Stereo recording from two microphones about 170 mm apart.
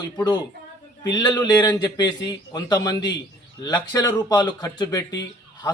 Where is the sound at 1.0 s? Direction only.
25° left (ahead or behind).